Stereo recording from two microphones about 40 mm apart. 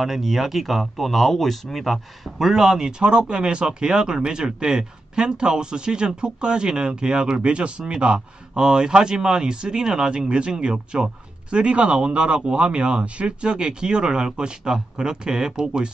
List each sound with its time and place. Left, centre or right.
0.0 s speech: centre